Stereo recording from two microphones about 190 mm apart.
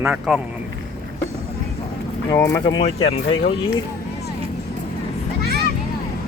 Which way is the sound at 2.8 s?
30° left (ahead or behind).